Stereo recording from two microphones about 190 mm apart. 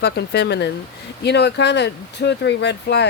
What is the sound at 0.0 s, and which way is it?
Speech, 60° left (ahead or behind).